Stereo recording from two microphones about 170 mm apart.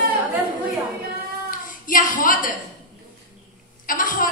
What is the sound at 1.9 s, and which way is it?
Speech, 55° left (ahead or behind).